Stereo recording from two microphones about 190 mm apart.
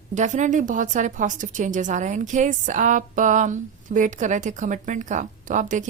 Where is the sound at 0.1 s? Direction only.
40° right (ahead or behind).